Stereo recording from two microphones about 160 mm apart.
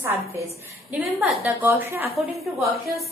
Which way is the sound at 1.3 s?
10° right (ahead or behind).